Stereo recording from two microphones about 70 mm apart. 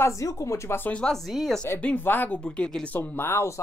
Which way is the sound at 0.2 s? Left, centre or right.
Left.